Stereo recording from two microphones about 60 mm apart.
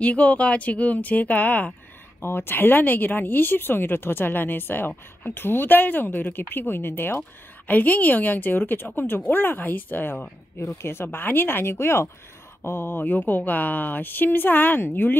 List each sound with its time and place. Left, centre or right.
0.0 s speech: left
2.2 s speech: left
7.6 s speech: left
10.6 s speech: left